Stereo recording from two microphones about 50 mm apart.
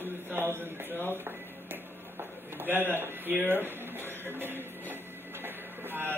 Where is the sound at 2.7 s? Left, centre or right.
Right.